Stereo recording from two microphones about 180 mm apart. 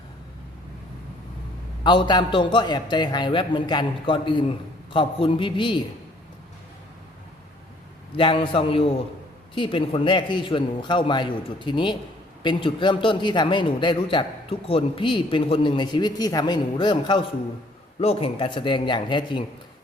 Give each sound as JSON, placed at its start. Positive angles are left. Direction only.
{"t": 1.8, "sound": "a man's voice", "side_deg": 25}
{"t": 8.1, "sound": "a man's voice", "side_deg": 30}